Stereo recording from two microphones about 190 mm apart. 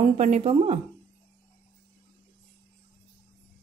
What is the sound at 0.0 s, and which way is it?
Speech, 35° right (ahead or behind).